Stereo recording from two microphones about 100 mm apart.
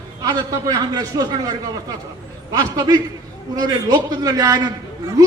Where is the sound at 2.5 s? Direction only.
40° right (ahead or behind).